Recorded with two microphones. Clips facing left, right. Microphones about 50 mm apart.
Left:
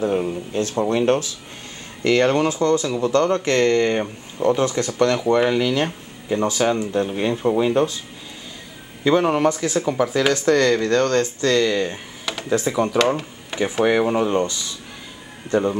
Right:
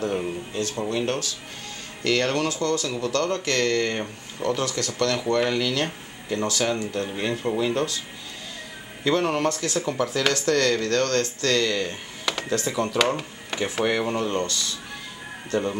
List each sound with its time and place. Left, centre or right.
0.0 s speech: centre
0.6 s speech: left; by 8.0 s centre
9.0 s speech: centre